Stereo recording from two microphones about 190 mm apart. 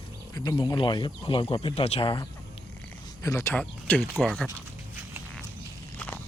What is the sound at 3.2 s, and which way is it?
Speech, 15° left (ahead or behind).